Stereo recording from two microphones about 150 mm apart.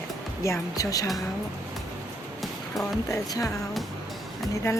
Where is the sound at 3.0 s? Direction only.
20° left (ahead or behind).